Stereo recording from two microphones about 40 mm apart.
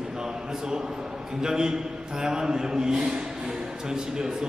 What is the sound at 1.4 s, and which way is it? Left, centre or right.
A man's voice, centre.